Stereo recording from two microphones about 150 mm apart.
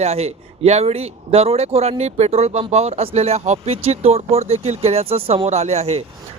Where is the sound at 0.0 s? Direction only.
45° right (ahead or behind).